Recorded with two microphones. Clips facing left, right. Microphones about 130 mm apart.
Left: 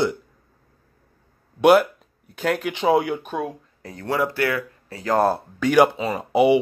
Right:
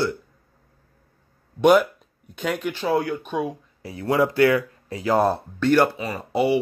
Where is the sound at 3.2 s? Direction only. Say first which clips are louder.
Right 1 dB; centre (ahead or behind).